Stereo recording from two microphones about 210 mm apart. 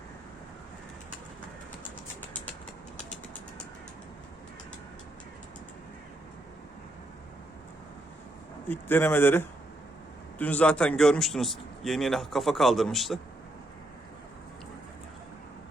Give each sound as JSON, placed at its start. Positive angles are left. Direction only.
{"t": 8.6, "sound": "a man's voice", "side_deg": 10}